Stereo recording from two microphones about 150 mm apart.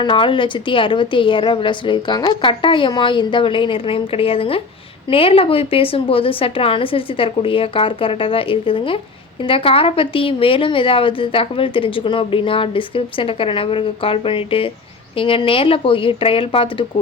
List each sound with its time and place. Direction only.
0.0 s a woman's voice: 35° left (ahead or behind)